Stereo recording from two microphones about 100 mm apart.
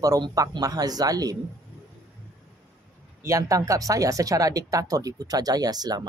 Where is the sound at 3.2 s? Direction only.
30° right (ahead or behind).